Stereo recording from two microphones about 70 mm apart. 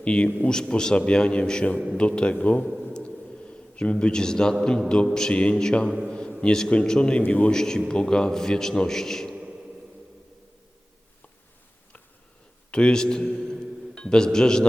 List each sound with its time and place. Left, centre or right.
0.0 s a man's voice: centre
2.9 s a sound: centre
5.1 s a man's voice: centre
6.1 s a sound: centre
6.4 s a man's voice: centre
7.3 s a man's voice: left
7.5 s a man's voice: centre
12.7 s a man's voice: centre